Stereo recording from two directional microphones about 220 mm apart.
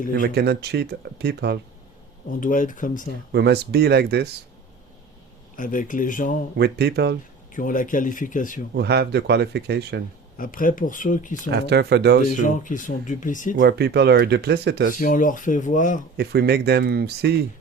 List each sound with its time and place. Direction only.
0.2 s speech: 45° right (ahead or behind)
2.4 s speech: 35° left (ahead or behind)
3.3 s speech: 45° right (ahead or behind)
5.5 s speech: 35° left (ahead or behind)
6.6 s speech: 50° right (ahead or behind)
7.5 s speech: 35° left (ahead or behind)
8.7 s speech: 50° right (ahead or behind)
10.3 s speech: 40° left (ahead or behind)
11.5 s speech: 50° right (ahead or behind)
12.3 s speech: 35° left (ahead or behind)
13.6 s speech: 50° right (ahead or behind)
14.9 s speech: 35° left (ahead or behind)
16.1 s speech: 50° right (ahead or behind)